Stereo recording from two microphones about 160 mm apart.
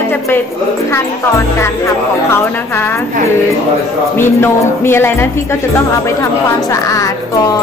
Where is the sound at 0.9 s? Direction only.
15° left (ahead or behind).